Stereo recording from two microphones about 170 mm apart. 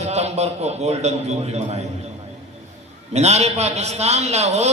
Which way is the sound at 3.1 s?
40° right (ahead or behind).